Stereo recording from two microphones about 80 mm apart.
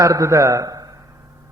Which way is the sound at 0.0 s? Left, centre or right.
Right.